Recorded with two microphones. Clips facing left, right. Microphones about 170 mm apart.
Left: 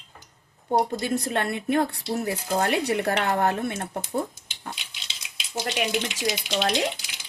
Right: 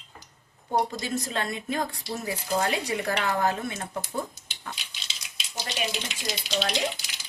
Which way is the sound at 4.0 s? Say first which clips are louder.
Left 4 dB; 30° left (ahead or behind).